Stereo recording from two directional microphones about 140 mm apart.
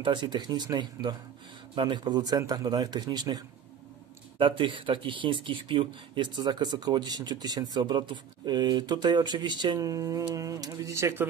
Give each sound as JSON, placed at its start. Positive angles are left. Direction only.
{"t": 0.0, "sound": "a man's voice", "side_deg": -35}